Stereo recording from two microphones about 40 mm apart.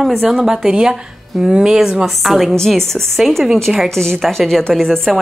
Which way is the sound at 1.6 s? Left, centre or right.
Centre.